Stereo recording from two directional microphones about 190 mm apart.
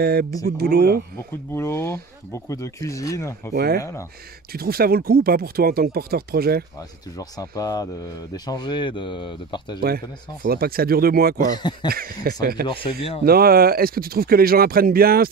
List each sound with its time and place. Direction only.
0.0 s speech: 55° right (ahead or behind)
1.5 s speech: 15° left (ahead or behind)
3.5 s speech: 55° right (ahead or behind)
3.8 s speech: 15° left (ahead or behind)
4.5 s speech: 55° right (ahead or behind)
6.8 s speech: 20° left (ahead or behind)
9.8 s speech: 55° right (ahead or behind)
11.5 s speech: 20° left (ahead or behind)
11.9 s speech: 50° right (ahead or behind)